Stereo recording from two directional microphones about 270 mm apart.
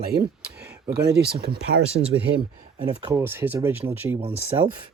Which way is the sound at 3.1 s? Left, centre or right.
Centre.